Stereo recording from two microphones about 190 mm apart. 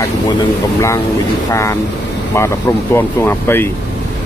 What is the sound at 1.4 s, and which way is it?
Speech, 15° left (ahead or behind).